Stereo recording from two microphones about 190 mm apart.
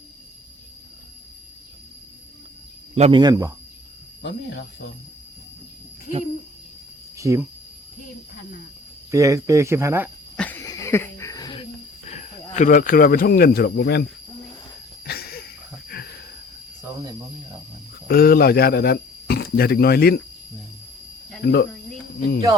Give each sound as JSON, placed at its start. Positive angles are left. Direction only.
{"t": 2.9, "sound": "speech", "side_deg": -35}
{"t": 3.2, "sound": "speech", "side_deg": -20}
{"t": 4.2, "sound": "speech", "side_deg": 60}
{"t": 7.2, "sound": "speech", "side_deg": -15}
{"t": 9.1, "sound": "speech", "side_deg": -15}
{"t": 10.3, "sound": "a sound", "side_deg": 10}
{"t": 12.0, "sound": "speech", "side_deg": 35}
{"t": 15.0, "sound": "a sound", "side_deg": 55}
{"t": 18.1, "sound": "speech", "side_deg": 55}
{"t": 21.4, "sound": "speech", "side_deg": 60}